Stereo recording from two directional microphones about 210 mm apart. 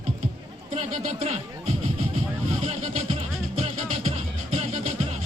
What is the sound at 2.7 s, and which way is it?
Music, 30° right (ahead or behind).